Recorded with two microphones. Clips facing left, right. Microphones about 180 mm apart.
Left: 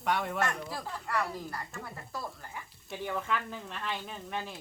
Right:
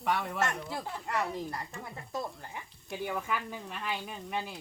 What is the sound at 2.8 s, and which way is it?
Speech, 5° right (ahead or behind).